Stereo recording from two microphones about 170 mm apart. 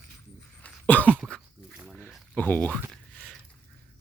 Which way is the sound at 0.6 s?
10° left (ahead or behind).